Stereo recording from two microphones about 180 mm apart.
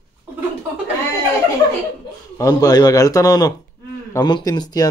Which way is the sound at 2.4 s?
20° left (ahead or behind).